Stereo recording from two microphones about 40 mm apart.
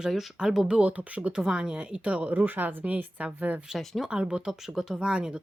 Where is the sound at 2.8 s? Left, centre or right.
Right.